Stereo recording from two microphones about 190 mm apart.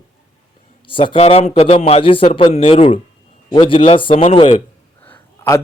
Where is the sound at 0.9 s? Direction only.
30° left (ahead or behind).